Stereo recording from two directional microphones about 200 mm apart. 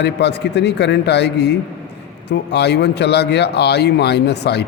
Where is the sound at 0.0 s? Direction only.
55° left (ahead or behind).